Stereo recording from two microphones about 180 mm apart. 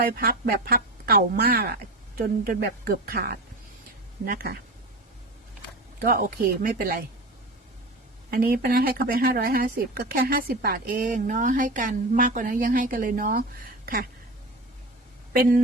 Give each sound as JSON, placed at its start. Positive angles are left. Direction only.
{"t": 0.0, "sound": "speech", "side_deg": -55}
{"t": 6.0, "sound": "speech", "side_deg": -55}
{"t": 8.3, "sound": "speech", "side_deg": -55}
{"t": 15.3, "sound": "speech", "side_deg": -55}